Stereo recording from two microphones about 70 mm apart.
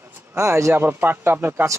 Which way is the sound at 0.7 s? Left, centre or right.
Right.